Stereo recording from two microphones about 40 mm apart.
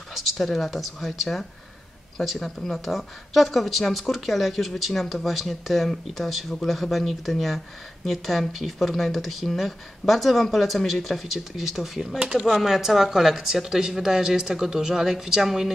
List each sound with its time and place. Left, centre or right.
0.1 s speech: centre
12.2 s speech: centre
12.4 s speech: centre